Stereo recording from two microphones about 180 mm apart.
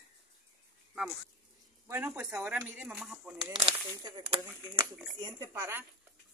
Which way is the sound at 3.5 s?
25° right (ahead or behind).